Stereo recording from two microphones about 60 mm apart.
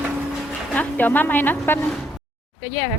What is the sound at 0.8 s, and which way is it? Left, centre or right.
A woman's voice, left.